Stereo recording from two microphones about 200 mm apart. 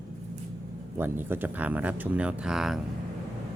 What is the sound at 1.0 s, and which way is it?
Speech, 10° right (ahead or behind).